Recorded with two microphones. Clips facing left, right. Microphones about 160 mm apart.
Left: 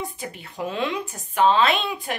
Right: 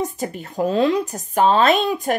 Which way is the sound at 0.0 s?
45° right (ahead or behind).